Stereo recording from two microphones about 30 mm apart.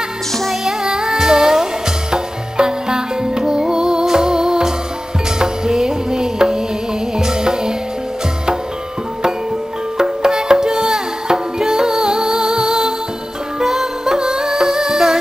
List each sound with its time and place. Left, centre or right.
0.7 s music: centre
9.9 s music: right
14.0 s music: right